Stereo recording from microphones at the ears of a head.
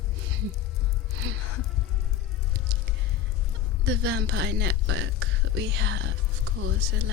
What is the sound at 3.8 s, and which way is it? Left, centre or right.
Speech, right.